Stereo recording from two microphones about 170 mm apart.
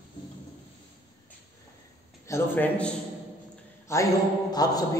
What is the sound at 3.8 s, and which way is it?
A man's voice, 20° left (ahead or behind).